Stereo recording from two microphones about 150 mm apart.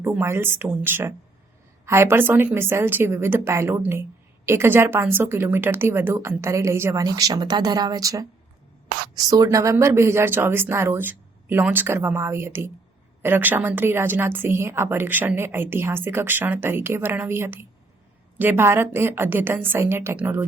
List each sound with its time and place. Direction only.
0.0 s a woman's voice: 15° right (ahead or behind)